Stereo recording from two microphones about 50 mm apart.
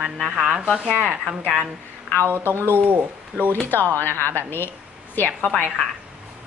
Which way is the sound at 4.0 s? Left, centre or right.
Left.